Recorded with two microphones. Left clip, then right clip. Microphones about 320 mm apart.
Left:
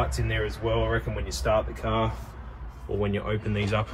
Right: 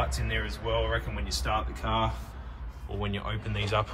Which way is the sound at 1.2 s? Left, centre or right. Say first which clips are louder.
Left 9 dB; centre.